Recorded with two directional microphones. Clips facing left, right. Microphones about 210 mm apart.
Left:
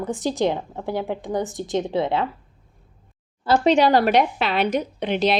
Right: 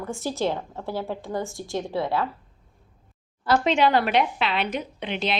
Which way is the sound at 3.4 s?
35° left (ahead or behind).